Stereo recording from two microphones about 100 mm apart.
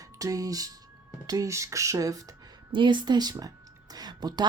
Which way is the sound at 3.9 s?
45° right (ahead or behind).